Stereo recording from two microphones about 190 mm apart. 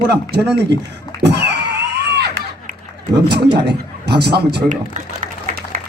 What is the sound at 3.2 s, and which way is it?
A man's voice, 60° right (ahead or behind).